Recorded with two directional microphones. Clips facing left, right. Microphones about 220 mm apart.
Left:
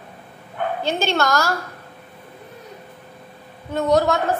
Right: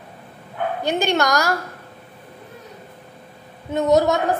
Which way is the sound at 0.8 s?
15° right (ahead or behind).